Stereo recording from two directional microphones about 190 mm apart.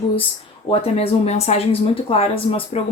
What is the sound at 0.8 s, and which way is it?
A woman's voice, 35° left (ahead or behind).